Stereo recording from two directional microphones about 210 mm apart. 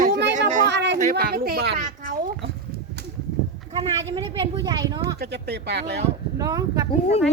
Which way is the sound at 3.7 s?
20° right (ahead or behind).